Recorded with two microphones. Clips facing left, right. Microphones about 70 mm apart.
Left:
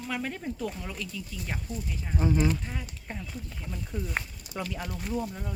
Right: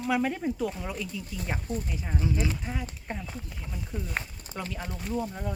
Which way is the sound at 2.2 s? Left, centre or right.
Left.